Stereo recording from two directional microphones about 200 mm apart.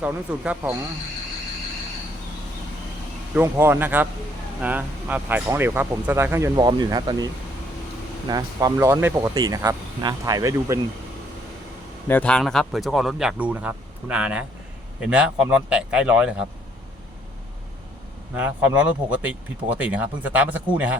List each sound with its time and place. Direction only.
0.0 s speech: 5° right (ahead or behind)
3.3 s speech: 10° right (ahead or behind)
8.3 s speech: 15° right (ahead or behind)
12.0 s speech: 10° left (ahead or behind)
18.3 s speech: 10° right (ahead or behind)